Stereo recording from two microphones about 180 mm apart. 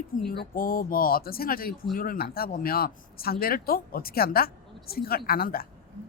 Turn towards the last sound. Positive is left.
turn(degrees=55)  # may be behind; listen again after turning